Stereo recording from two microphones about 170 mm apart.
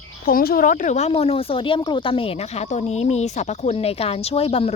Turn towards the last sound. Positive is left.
turn(degrees=35)  # may be behind; listen again after turning